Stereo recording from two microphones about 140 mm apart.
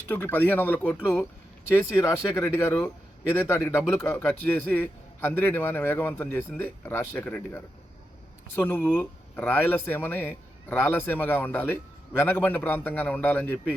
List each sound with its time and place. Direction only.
0.1 s a man's voice: 15° left (ahead or behind)